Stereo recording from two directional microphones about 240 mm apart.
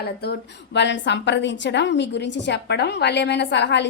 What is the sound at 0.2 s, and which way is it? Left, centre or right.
A woman's voice, left.